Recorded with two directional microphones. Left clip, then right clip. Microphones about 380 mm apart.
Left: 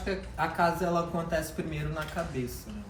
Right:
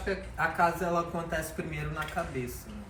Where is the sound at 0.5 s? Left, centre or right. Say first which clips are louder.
Left 1 dB; centre.